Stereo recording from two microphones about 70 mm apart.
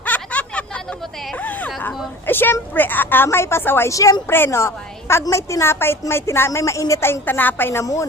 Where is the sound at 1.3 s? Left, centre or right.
Left.